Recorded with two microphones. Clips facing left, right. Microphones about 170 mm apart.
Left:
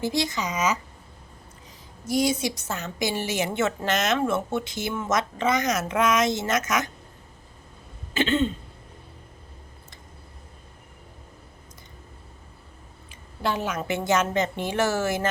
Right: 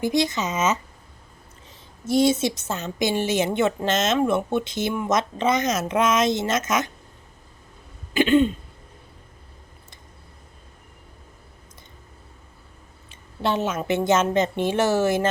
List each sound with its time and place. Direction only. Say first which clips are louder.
0.0 s a woman's voice: right 4 dB; 20° right (ahead or behind)
2.0 s a woman's voice: right 4 dB; 25° right (ahead or behind)
8.1 s throat clearing: right 5 dB; 15° right (ahead or behind)
13.4 s a woman's voice: right 3 dB; 25° right (ahead or behind)